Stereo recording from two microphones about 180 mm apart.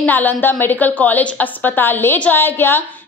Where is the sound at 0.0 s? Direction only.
10° left (ahead or behind).